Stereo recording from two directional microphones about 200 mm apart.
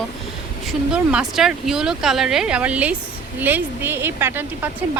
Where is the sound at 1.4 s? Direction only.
Centre (ahead or behind).